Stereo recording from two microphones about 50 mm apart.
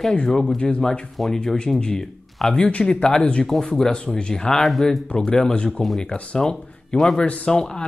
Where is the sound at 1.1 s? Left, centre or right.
Centre.